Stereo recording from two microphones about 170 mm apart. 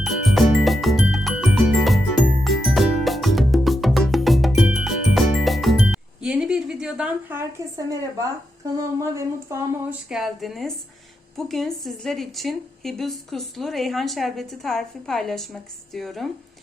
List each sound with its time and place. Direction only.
0.0 s music: centre (ahead or behind); by 8.3 s 20° right (ahead or behind)
8.8 s a sound: 15° right (ahead or behind)
10.1 s a woman's voice: centre (ahead or behind)